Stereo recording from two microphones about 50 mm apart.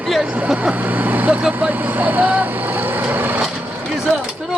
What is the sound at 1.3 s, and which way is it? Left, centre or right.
Speech, right.